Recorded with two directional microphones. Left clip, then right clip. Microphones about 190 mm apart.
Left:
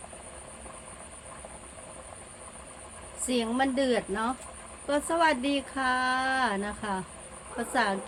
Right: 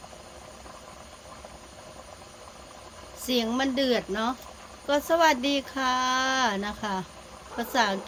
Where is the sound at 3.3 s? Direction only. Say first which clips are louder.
Right 1 dB; 35° right (ahead or behind).